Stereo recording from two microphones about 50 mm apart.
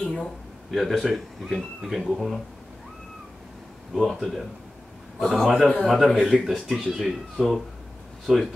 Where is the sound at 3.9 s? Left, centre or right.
Centre.